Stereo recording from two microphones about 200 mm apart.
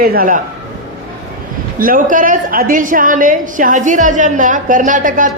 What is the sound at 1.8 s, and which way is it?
A woman's voice, 45° right (ahead or behind).